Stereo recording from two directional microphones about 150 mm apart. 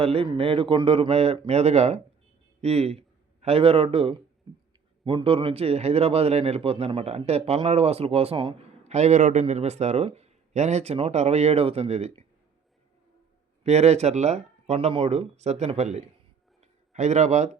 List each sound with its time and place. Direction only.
0.0 s a man's voice: 40° right (ahead or behind)
8.8 s a man's voice: 50° right (ahead or behind)
13.7 s a man's voice: 45° right (ahead or behind)
16.6 s a sound: 50° right (ahead or behind)